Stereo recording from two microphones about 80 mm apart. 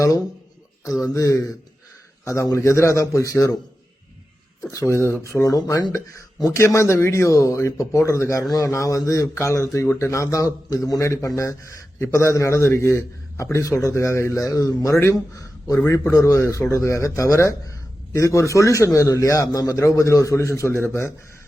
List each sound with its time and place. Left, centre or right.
1.1 s a man's voice: left
4.6 s a man's voice: left
5.5 s a man's voice: left